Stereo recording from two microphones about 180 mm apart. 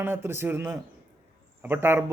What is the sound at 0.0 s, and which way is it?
A man's voice, 10° right (ahead or behind).